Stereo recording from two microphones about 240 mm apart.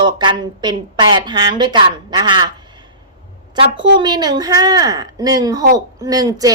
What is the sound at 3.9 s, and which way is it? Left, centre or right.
A woman's voice, centre.